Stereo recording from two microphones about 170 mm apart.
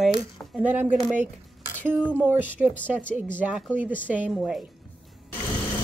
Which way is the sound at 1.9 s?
10° right (ahead or behind).